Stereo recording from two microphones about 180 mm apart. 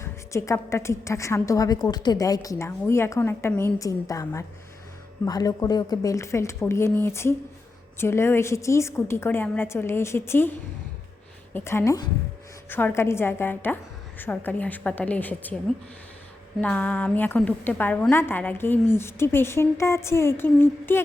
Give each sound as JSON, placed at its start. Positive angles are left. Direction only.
{"t": 0.0, "sound": "a woman's voice", "side_deg": 15}
{"t": 16.6, "sound": "a woman's voice", "side_deg": 10}